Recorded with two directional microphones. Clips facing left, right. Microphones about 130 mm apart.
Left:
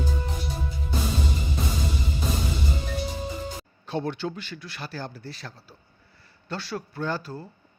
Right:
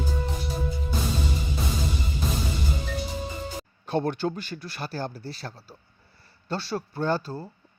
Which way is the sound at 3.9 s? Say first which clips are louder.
Right 3 dB; 50° right (ahead or behind).